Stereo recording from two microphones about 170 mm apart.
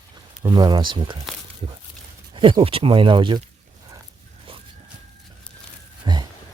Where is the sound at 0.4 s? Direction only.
25° right (ahead or behind).